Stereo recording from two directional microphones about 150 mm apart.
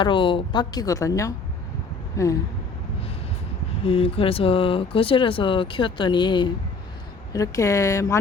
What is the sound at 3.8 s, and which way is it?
Speech, 40° left (ahead or behind).